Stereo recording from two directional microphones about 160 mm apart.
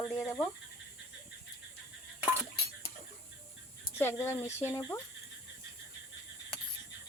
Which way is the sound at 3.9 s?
15° left (ahead or behind).